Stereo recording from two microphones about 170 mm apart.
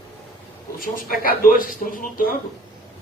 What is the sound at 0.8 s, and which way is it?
A man's voice, 55° left (ahead or behind).